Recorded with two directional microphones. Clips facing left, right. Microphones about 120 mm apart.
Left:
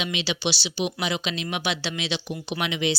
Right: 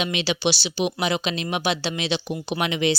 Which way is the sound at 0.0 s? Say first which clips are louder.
Right 4 dB; 50° right (ahead or behind).